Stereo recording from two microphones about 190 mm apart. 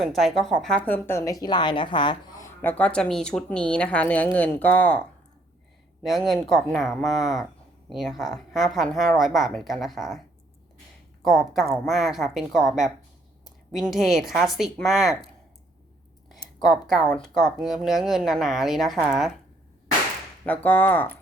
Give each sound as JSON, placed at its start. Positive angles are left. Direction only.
{"t": 0.0, "sound": "a woman's voice", "side_deg": 0}
{"t": 11.5, "sound": "a woman's voice", "side_deg": 0}
{"t": 17.1, "sound": "a woman's voice", "side_deg": 0}
{"t": 20.4, "sound": "speech", "side_deg": 10}